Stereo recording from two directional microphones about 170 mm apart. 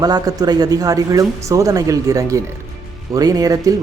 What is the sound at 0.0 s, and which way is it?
Speech, 20° right (ahead or behind).